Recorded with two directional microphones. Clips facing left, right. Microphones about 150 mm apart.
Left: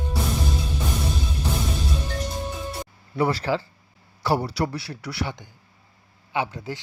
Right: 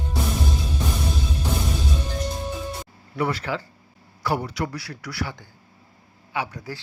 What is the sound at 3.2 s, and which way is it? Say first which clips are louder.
A man's voice: left 3 dB; 30° left (ahead or behind).